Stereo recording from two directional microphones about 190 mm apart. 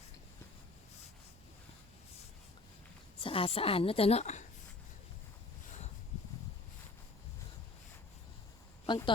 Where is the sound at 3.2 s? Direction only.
30° left (ahead or behind).